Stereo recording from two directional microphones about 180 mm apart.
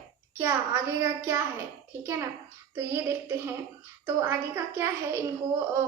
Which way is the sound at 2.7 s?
15° right (ahead or behind).